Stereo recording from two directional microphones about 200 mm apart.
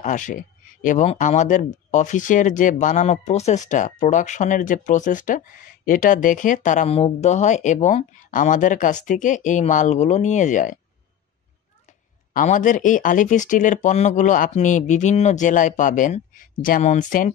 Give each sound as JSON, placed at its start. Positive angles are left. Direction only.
{"t": 0.0, "sound": "speech", "side_deg": 40}
{"t": 12.4, "sound": "speech", "side_deg": 40}